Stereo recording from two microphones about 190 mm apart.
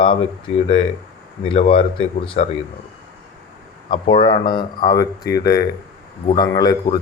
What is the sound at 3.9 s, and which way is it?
Speech, 25° left (ahead or behind).